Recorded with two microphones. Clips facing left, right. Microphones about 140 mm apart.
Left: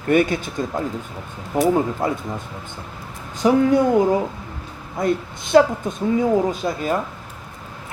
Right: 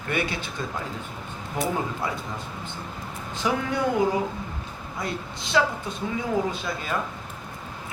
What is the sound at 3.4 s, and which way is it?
Speech, 40° left (ahead or behind).